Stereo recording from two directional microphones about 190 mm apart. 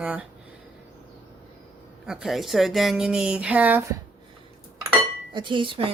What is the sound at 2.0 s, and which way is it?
Speech, centre (ahead or behind).